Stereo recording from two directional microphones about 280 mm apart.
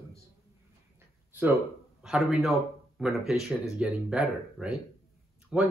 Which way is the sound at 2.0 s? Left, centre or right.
Centre.